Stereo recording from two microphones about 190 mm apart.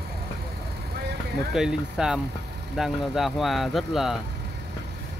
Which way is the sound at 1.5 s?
Centre (ahead or behind).